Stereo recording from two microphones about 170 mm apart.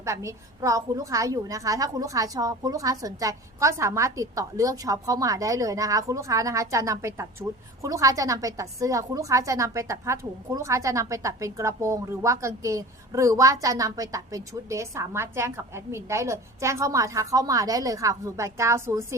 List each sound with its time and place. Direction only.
0.0 s a woman's voice: 20° right (ahead or behind)